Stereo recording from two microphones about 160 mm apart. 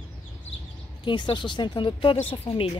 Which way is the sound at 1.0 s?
30° left (ahead or behind).